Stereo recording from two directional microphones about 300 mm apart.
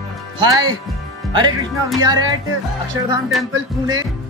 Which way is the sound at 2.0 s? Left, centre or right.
Centre.